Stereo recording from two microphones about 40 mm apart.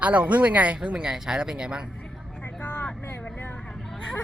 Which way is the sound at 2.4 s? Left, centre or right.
Left.